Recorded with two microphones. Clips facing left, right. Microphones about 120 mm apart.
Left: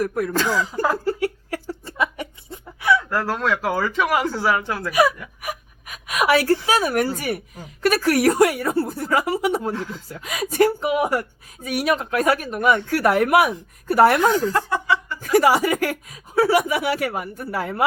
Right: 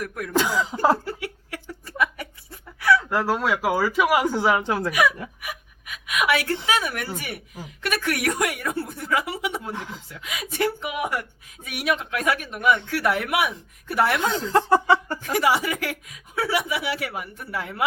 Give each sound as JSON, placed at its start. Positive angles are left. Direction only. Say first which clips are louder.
{"t": 0.0, "sound": "speech", "louder": "left 9 dB", "side_deg": 35}
{"t": 0.3, "sound": "speech", "louder": "right 3 dB", "side_deg": -15}
{"t": 1.0, "sound": "a sound", "louder": "left 9 dB", "side_deg": 40}
{"t": 2.0, "sound": "a sound", "louder": "even", "side_deg": 20}
{"t": 3.0, "sound": "speech", "louder": "even", "side_deg": -15}
{"t": 4.9, "sound": "speech", "louder": "left 5 dB", "side_deg": 35}
{"t": 5.4, "sound": "gasp", "louder": "left 5 dB", "side_deg": 40}
{"t": 6.7, "sound": "speech", "louder": "left 6 dB", "side_deg": 40}
{"t": 9.7, "sound": "speech", "louder": "left 5 dB", "side_deg": -20}
{"t": 10.1, "sound": "speech", "louder": "left 6 dB", "side_deg": 40}
{"t": 14.3, "sound": "speech", "louder": "right 1 dB", "side_deg": -25}
{"t": 15.2, "sound": "speech", "louder": "left 5 dB", "side_deg": 40}